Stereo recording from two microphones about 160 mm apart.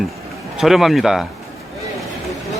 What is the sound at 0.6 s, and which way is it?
Speech, centre (ahead or behind).